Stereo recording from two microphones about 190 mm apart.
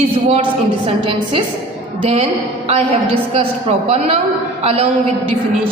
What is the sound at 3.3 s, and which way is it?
A woman's voice, 30° right (ahead or behind).